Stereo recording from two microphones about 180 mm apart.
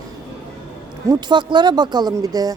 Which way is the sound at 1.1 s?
25° right (ahead or behind).